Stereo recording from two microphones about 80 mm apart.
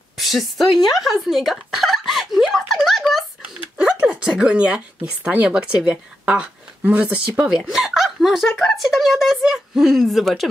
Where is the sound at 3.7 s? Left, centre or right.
Centre.